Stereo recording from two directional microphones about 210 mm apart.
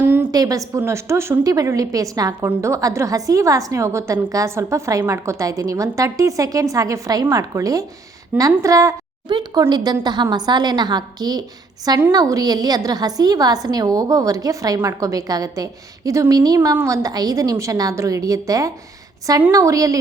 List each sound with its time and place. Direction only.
0.0 s a woman's voice: 10° right (ahead or behind)